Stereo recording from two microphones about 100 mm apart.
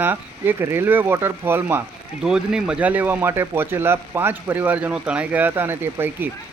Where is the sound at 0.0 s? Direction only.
20° right (ahead or behind).